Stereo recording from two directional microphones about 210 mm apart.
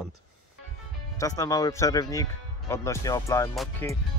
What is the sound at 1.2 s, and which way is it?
Speech, 15° left (ahead or behind).